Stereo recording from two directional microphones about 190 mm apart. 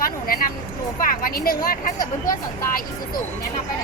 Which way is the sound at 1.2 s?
50° left (ahead or behind).